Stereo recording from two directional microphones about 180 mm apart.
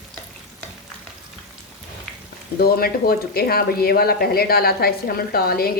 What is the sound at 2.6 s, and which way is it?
Speech, 60° left (ahead or behind).